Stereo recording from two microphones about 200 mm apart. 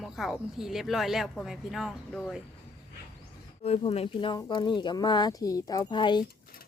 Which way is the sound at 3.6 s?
30° left (ahead or behind).